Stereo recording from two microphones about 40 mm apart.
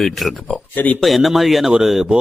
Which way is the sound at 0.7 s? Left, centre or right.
Left.